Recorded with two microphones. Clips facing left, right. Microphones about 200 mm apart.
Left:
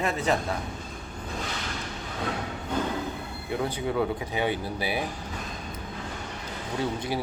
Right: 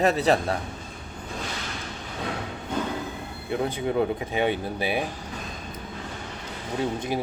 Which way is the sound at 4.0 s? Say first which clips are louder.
Right 3 dB; 20° right (ahead or behind).